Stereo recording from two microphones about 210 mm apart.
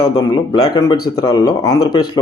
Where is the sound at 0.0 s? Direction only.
20° left (ahead or behind).